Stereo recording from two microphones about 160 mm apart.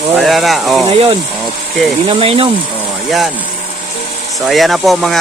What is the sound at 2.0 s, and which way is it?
Speech, 35° right (ahead or behind).